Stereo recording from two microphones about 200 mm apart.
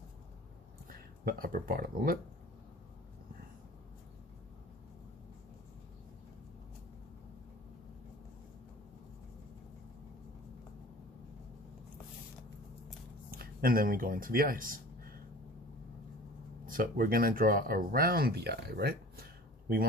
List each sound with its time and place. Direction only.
0.9 s speech: 50° right (ahead or behind)
13.3 s speech: 45° right (ahead or behind)
16.6 s speech: 45° right (ahead or behind)